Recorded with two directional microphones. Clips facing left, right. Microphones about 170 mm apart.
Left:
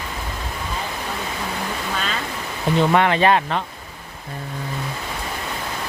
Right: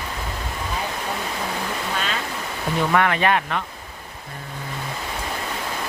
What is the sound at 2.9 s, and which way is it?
Speech, 25° left (ahead or behind).